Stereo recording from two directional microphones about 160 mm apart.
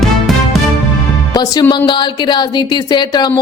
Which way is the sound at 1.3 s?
25° left (ahead or behind).